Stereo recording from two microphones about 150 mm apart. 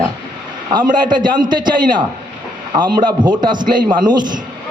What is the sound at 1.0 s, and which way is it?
A man's voice, 30° right (ahead or behind).